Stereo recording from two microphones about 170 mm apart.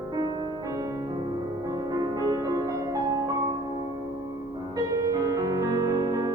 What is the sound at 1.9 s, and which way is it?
Music, 20° right (ahead or behind).